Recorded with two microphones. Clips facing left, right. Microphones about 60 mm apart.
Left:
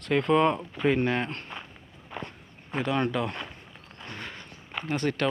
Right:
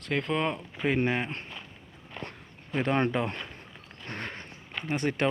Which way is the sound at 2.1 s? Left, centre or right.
Centre.